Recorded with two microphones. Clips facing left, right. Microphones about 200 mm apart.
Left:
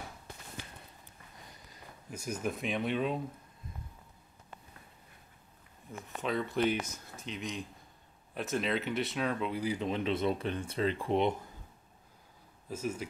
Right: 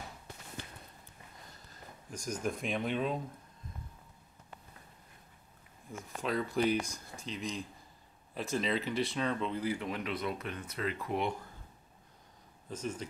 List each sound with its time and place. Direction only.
1.7 s speech: 5° left (ahead or behind)
6.0 s speech: centre (ahead or behind); by 11.3 s 25° left (ahead or behind)
12.6 s speech: 5° left (ahead or behind)